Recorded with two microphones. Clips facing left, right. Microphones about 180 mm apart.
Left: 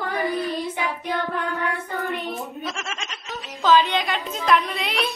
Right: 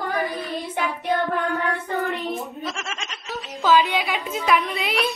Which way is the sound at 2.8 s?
Centre (ahead or behind).